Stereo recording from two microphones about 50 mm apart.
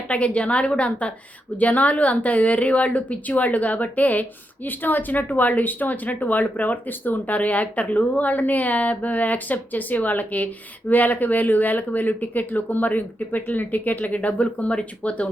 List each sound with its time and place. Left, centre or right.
0.1 s a woman's voice: left